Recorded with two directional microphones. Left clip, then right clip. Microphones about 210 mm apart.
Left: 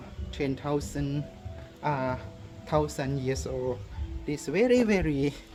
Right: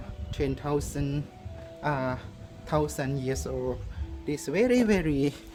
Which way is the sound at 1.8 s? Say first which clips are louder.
Even; 15° right (ahead or behind).